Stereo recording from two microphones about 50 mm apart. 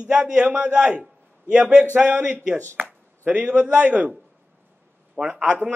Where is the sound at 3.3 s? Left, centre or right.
Right.